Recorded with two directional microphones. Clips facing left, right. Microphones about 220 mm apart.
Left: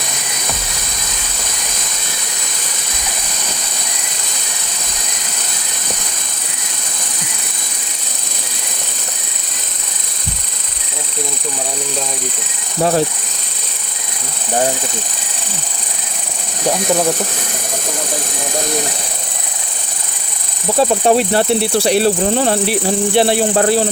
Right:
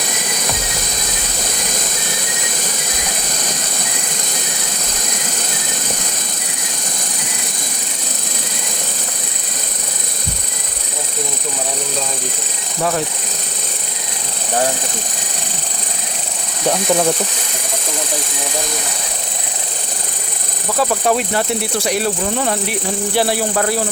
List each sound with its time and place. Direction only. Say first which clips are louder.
20.7 s speech: left 4 dB; 25° left (ahead or behind)